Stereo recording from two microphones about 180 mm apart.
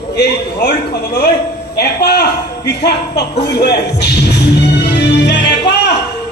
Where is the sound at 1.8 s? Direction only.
65° left (ahead or behind).